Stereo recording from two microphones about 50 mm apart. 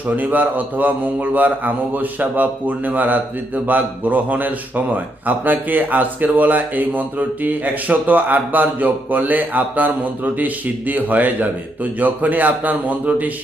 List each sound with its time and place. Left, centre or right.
0.2 s speech: right